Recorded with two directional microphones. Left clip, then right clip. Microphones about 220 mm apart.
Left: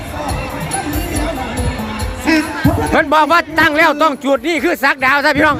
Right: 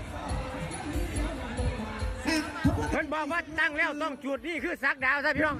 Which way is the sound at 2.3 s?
50° right (ahead or behind).